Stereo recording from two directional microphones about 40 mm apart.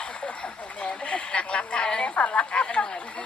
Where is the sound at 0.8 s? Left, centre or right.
Left.